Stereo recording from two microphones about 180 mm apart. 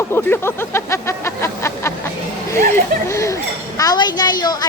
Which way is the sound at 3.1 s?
15° left (ahead or behind).